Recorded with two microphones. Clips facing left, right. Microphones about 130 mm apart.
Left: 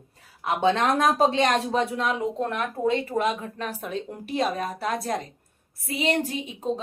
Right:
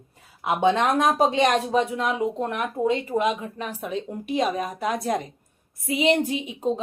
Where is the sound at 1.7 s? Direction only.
5° right (ahead or behind).